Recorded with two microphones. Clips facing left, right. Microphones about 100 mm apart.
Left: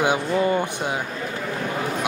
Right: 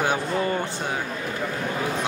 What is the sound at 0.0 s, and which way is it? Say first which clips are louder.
Speech: left 3 dB; 15° left (ahead or behind).